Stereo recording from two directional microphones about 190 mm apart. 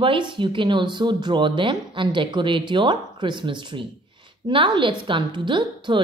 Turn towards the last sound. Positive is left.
turn(degrees=-25)  # may be behind; listen again after turning